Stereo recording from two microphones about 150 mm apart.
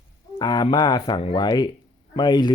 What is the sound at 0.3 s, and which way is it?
Speech, 25° left (ahead or behind).